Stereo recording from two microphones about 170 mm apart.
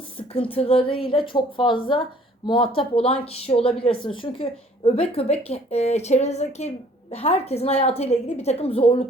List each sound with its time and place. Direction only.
0.2 s speech: 35° left (ahead or behind)